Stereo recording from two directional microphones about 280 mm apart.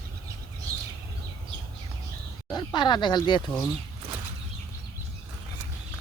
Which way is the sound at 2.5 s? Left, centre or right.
Centre.